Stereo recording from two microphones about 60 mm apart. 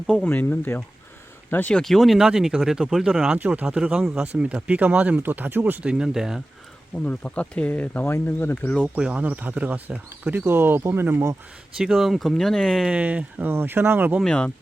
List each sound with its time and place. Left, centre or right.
0.3 s speech: left
1.8 s speech: centre
3.3 s speech: right
3.9 s speech: centre; by 5.8 s right
5.8 s speech: centre
7.0 s speech: centre
8.0 s speech: left
9.0 s speech: centre
10.4 s speech: right
11.8 s speech: centre
12.9 s speech: right
13.5 s speech: right
14.3 s speech: centre